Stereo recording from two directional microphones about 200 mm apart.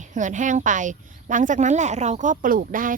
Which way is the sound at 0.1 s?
40° right (ahead or behind).